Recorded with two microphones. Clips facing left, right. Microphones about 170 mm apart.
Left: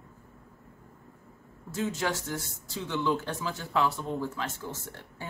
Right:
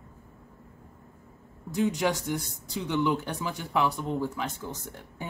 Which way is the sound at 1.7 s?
15° right (ahead or behind).